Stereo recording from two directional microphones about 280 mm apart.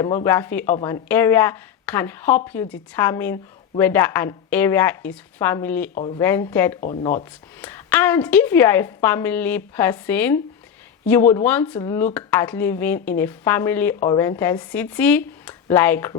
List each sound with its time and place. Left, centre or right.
0.3 s speech: centre
5.9 s speech: left
6.1 s speech: centre
6.7 s speech: left
7.6 s speech: centre